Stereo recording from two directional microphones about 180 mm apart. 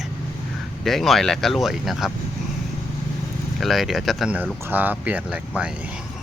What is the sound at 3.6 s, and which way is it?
Speech, centre (ahead or behind).